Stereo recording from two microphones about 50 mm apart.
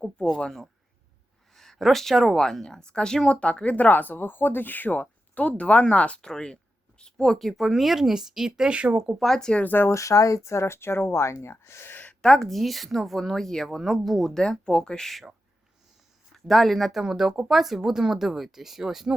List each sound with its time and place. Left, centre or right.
1.5 s speech: centre; by 6.1 s left
6.2 s speech: centre; by 9.0 s right
9.2 s speech: centre
9.6 s speech: left
9.9 s speech: left
12.2 s speech: centre
14.6 s speech: centre
16.3 s speech: centre
17.0 s speech: centre